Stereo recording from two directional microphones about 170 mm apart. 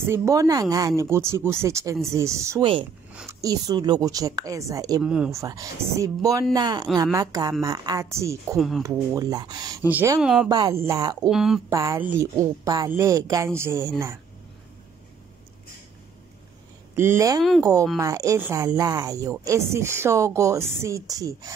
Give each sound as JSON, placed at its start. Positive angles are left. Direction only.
{"t": 0.0, "sound": "a woman's voice", "side_deg": -15}
{"t": 2.6, "sound": "speech", "side_deg": -30}
{"t": 3.3, "sound": "speech", "side_deg": -20}
{"t": 5.0, "sound": "speech", "side_deg": -5}
{"t": 5.3, "sound": "a woman's voice", "side_deg": -20}
{"t": 8.5, "sound": "speech", "side_deg": 0}
{"t": 8.8, "sound": "speech", "side_deg": -20}
{"t": 9.8, "sound": "a woman's voice", "side_deg": -10}
{"t": 10.5, "sound": "speech", "side_deg": -20}
{"t": 11.2, "sound": "speech", "side_deg": 0}
{"t": 11.7, "sound": "a woman's voice", "side_deg": -15}
{"t": 16.9, "sound": "speech", "side_deg": -15}
{"t": 17.4, "sound": "speech", "side_deg": 0}
{"t": 17.9, "sound": "speech", "side_deg": -20}